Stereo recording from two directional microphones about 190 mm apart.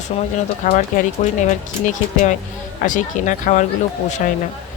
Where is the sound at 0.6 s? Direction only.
45° left (ahead or behind).